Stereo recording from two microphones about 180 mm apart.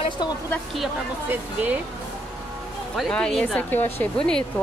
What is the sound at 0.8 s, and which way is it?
Speech, 10° right (ahead or behind).